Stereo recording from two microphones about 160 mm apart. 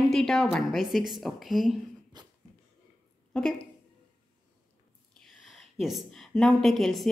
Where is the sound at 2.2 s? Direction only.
25° right (ahead or behind).